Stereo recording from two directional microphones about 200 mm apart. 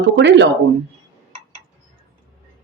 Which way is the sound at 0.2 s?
60° right (ahead or behind).